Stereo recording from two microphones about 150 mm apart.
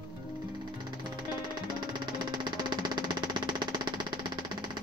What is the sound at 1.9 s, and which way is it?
Music, 30° right (ahead or behind).